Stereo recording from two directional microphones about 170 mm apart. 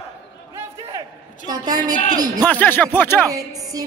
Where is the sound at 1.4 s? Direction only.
20° right (ahead or behind).